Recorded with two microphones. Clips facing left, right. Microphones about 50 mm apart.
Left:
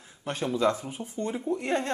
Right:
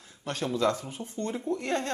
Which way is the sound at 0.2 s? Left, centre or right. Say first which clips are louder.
Left 2 dB; centre.